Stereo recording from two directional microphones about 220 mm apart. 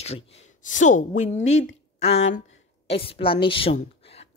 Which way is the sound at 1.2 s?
60° left (ahead or behind).